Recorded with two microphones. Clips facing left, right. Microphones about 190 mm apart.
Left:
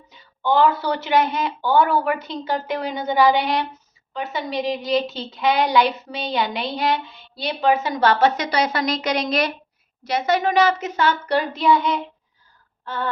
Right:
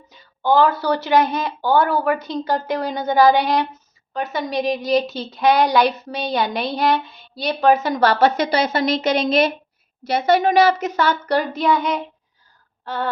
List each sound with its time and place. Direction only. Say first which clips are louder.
0.4 s a woman's voice: right 2 dB; 40° right (ahead or behind)
12.8 s throat clearing: right 2 dB; 40° right (ahead or behind)